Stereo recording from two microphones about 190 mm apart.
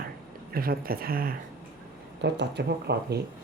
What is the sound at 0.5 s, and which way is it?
Speech, 50° right (ahead or behind).